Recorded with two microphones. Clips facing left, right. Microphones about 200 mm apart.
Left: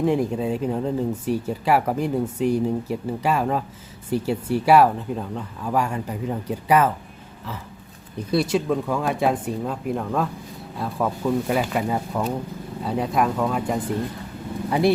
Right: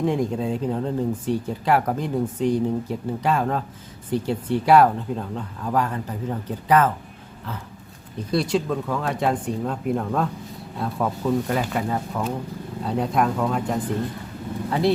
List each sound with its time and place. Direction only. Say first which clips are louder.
0.0 s speech: left 1 dB; centre (ahead or behind)
8.3 s speech: left 1 dB; 5° left (ahead or behind)